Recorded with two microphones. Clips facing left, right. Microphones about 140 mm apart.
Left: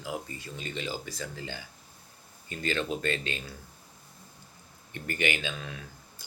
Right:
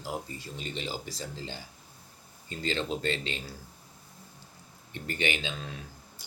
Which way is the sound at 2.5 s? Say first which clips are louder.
Left 1 dB; 25° right (ahead or behind).